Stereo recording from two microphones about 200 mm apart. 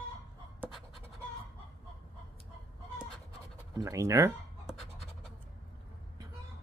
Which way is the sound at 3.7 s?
15° right (ahead or behind).